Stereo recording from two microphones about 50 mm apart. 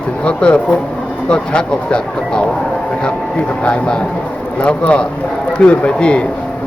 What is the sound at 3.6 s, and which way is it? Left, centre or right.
Speech, left.